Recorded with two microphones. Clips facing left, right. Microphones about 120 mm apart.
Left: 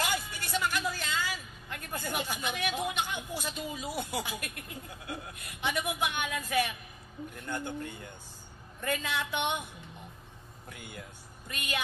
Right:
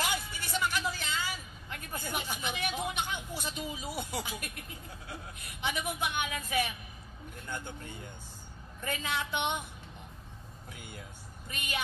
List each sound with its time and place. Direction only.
0.0 s vehicle: 55° left (ahead or behind)
3.9 s speech: 60° left (ahead or behind)
11.4 s a woman's voice: 55° left (ahead or behind)